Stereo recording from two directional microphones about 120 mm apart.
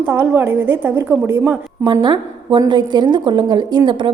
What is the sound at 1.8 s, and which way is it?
A woman's voice, 35° right (ahead or behind).